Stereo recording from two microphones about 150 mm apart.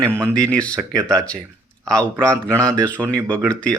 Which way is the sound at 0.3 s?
10° left (ahead or behind).